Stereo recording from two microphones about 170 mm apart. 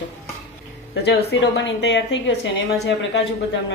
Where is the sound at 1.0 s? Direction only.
85° left.